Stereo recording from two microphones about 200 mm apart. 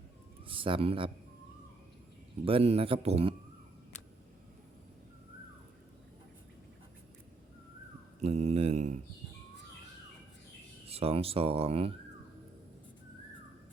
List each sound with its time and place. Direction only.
0.4 s speech: 25° right (ahead or behind)
2.4 s speech: 30° right (ahead or behind)
8.2 s mantra: 30° right (ahead or behind)
10.8 s speech: 30° right (ahead or behind)